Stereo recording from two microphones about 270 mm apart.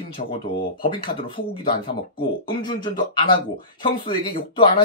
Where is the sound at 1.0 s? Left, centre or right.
Centre.